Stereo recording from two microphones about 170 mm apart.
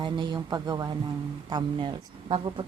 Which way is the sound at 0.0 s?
25° right (ahead or behind).